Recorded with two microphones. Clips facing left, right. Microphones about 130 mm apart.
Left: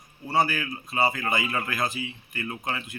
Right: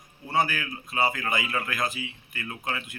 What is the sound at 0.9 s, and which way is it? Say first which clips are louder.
Speech: left 1 dB; 10° left (ahead or behind).